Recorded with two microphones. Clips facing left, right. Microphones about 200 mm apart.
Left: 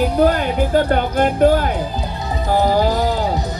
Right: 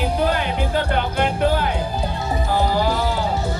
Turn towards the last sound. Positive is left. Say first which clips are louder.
# left 3 dB
turn(degrees=15)  # may be behind; listen again after turning